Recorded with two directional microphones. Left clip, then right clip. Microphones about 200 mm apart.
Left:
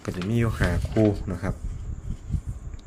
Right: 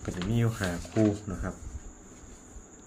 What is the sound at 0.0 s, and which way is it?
Speech, 30° left (ahead or behind).